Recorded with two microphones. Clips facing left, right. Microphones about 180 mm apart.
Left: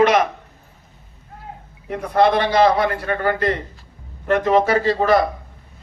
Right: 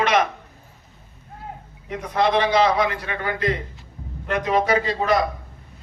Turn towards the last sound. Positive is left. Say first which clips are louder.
# left 4 dB
turn(degrees=50)  # may be behind; listen again after turning